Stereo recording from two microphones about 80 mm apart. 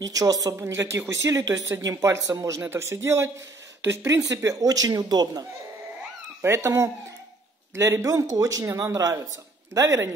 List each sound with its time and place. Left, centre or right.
0.0 s speech: right
6.4 s speech: right